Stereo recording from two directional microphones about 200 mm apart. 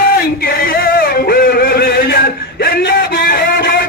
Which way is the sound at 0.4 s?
50° left (ahead or behind).